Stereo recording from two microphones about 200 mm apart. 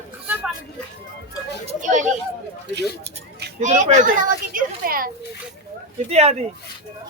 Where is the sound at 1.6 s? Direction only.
40° right (ahead or behind).